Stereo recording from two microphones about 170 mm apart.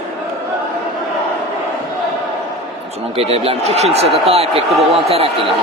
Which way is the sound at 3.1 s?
35° right (ahead or behind).